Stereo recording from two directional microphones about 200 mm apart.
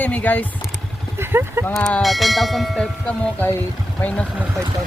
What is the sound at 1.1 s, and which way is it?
Speech, 10° right (ahead or behind).